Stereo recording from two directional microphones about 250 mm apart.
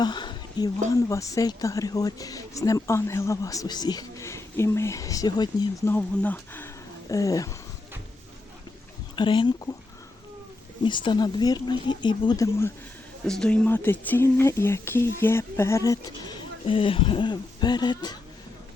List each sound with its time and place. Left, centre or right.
0.0 s a sound: centre
0.9 s a woman's voice: centre
9.1 s speech: centre
10.8 s a woman's voice: centre